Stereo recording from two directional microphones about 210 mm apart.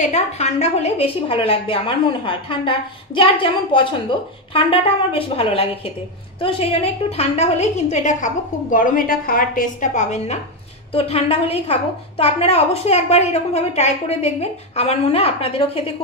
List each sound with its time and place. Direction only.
0.0 s a woman's voice: 30° left (ahead or behind)